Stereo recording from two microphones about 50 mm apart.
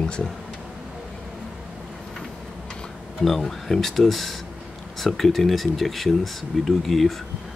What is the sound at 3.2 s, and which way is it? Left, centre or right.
Speech, centre.